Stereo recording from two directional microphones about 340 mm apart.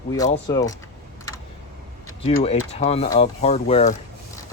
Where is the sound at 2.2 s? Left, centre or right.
Centre.